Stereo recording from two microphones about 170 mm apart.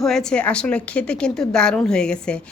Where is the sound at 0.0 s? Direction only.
5° left (ahead or behind).